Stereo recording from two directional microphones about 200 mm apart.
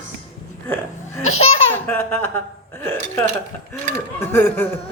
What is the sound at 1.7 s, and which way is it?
Speech, 10° left (ahead or behind).